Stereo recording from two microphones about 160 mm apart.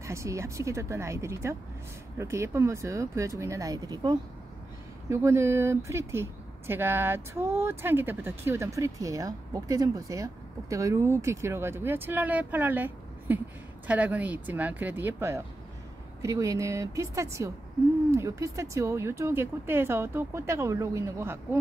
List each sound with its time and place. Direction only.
0.0 s speech: 20° right (ahead or behind)